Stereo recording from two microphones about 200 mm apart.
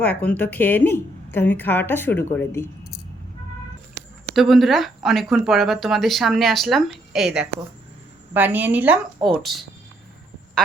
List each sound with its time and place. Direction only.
0.0 s a woman's voice: 5° left (ahead or behind)
4.4 s speech: centre (ahead or behind)